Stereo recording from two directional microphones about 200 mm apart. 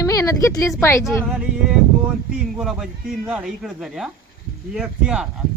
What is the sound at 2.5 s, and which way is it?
Speech, centre (ahead or behind).